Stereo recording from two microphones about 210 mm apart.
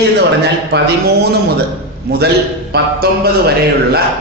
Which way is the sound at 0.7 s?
50° right (ahead or behind).